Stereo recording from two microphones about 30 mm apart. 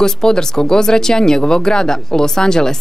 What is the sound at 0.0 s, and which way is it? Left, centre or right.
Speech, left.